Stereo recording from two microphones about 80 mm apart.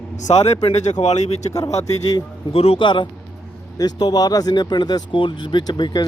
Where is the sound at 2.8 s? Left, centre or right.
Left.